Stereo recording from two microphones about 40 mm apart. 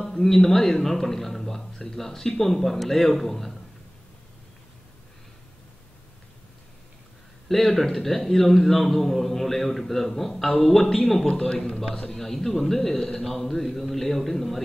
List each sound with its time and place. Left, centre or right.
0.0 s a man's voice: centre
7.4 s a man's voice: centre